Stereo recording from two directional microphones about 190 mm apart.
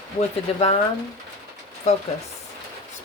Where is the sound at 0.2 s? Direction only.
30° left (ahead or behind).